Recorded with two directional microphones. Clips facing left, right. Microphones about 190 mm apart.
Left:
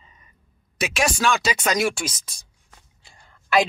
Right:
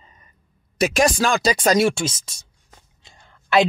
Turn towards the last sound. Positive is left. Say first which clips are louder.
# right 2 dB
turn(degrees=-20)  # may be behind; listen again after turning